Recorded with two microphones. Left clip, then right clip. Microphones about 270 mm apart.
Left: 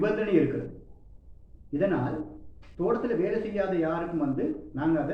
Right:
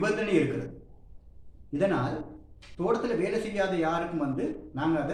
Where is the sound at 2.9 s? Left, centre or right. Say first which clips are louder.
Even; right.